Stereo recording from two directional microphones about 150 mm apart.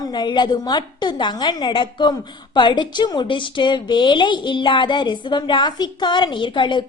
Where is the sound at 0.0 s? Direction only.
30° left (ahead or behind).